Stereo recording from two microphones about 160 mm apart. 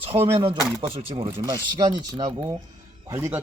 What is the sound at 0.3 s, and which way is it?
Speech, 35° right (ahead or behind).